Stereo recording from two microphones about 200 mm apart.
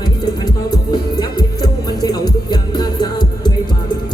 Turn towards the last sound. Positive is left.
turn(degrees=20)  # may be behind; listen again after turning